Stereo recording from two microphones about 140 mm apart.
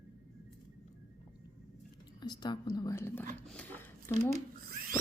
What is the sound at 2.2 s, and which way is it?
Speech, 30° left (ahead or behind).